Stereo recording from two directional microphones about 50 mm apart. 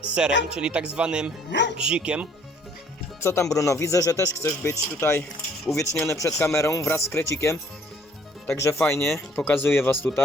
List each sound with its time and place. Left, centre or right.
0.1 s speech: centre
3.2 s speech: left
6.9 s speech: left
9.3 s speech: left